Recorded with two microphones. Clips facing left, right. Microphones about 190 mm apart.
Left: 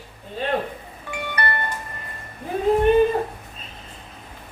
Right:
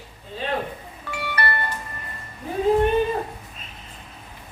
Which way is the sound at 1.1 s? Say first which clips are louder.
Even; 20° left (ahead or behind).